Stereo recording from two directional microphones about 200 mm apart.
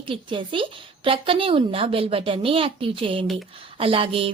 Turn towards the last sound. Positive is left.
turn(degrees=-30)  # may be behind; listen again after turning